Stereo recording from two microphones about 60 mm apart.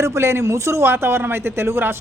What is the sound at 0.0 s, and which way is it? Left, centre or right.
A man's voice, right.